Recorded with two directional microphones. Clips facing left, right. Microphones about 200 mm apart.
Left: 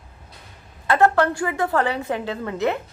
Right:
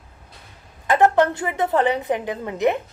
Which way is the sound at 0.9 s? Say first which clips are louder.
Right 1 dB; 15° right (ahead or behind).